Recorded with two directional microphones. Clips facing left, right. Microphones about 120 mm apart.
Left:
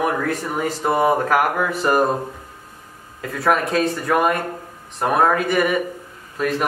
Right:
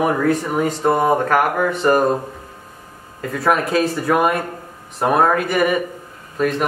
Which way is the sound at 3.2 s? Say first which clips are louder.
Right 1 dB; centre (ahead or behind).